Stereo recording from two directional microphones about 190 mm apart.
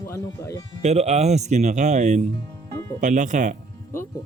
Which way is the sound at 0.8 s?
35° right (ahead or behind).